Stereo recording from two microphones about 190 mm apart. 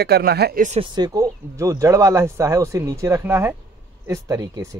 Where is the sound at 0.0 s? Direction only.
55° right (ahead or behind).